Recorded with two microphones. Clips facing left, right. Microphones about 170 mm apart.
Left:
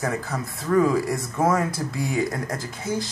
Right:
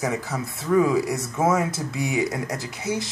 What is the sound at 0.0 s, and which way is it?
Speech, 10° right (ahead or behind).